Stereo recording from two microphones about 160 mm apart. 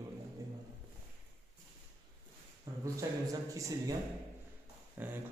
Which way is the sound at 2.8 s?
20° right (ahead or behind).